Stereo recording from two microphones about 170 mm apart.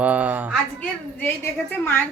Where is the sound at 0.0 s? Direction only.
10° right (ahead or behind).